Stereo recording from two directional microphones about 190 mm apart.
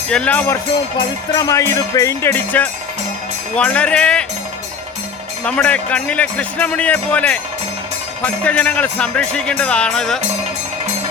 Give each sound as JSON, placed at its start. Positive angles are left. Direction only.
{"t": 0.1, "sound": "speech", "side_deg": 5}
{"t": 5.5, "sound": "speech", "side_deg": 5}